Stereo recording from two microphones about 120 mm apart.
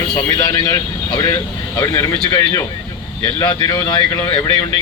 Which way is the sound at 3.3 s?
30° left (ahead or behind).